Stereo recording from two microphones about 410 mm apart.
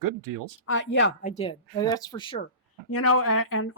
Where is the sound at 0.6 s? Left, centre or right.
Left; by 2.4 s centre.